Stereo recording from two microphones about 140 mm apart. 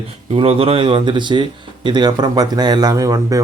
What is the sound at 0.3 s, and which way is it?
Speech, 40° right (ahead or behind).